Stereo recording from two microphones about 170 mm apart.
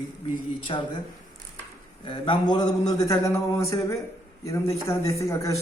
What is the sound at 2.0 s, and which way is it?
A man's voice, 30° left (ahead or behind).